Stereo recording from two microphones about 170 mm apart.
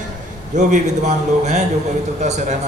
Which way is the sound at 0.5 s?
45° right (ahead or behind).